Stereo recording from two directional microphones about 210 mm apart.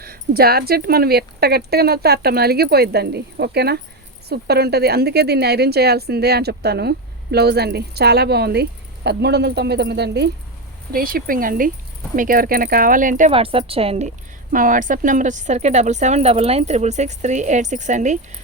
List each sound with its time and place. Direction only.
0.0 s speech: 45° right (ahead or behind)
13.3 s a woman's voice: 25° right (ahead or behind)
14.5 s speech: 40° right (ahead or behind)